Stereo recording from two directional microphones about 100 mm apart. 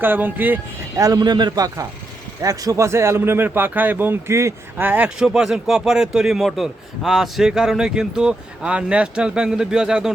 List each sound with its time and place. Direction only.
0.0 s speech: 20° right (ahead or behind)
0.9 s speech: 35° right (ahead or behind); by 10.1 s 5° right (ahead or behind)